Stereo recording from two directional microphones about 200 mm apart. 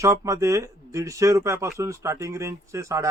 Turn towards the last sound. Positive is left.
turn(degrees=-15)  # may be behind; listen again after turning